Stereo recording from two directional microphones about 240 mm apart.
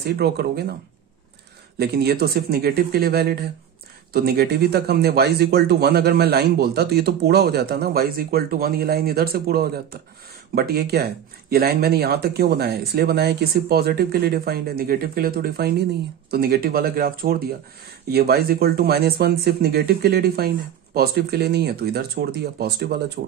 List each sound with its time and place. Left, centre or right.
0.0 s speech: right
1.8 s speech: right